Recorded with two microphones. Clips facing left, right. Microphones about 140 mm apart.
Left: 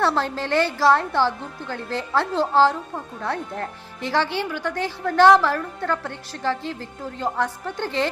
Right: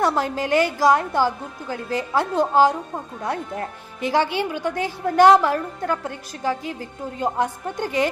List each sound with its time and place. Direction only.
0.0 s a woman's voice: 15° right (ahead or behind)